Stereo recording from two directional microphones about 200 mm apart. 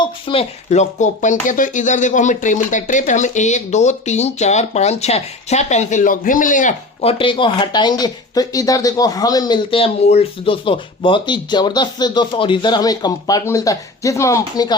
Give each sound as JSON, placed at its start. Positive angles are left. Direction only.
{"t": 0.0, "sound": "speech", "side_deg": 25}